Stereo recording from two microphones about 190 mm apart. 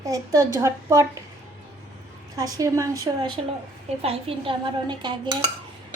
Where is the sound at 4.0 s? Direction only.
30° right (ahead or behind).